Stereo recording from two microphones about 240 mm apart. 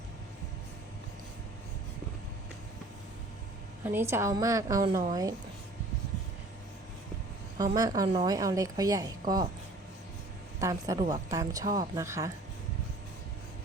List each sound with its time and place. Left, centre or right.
3.8 s a woman's voice: centre
7.6 s a woman's voice: centre
10.6 s a woman's voice: centre